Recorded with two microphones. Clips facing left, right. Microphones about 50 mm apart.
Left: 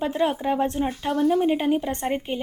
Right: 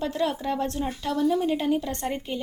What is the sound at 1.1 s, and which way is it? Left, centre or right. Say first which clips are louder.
Speech: left 2 dB; left.